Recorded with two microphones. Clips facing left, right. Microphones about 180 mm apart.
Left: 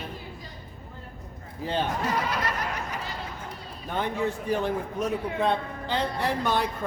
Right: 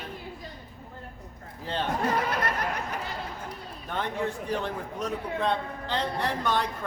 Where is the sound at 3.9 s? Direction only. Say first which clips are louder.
Left 2 dB; 5° left (ahead or behind).